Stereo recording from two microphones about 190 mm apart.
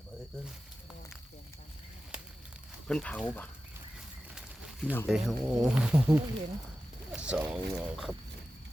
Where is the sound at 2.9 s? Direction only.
5° left (ahead or behind).